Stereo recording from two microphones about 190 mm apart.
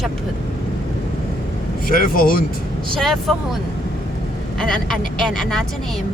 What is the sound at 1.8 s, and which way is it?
Speech, 50° left (ahead or behind).